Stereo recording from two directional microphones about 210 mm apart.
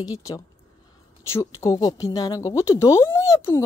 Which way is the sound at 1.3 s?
15° left (ahead or behind).